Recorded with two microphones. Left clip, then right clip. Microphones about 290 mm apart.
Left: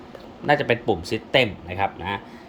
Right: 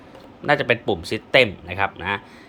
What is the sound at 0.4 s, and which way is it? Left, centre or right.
Speech, centre.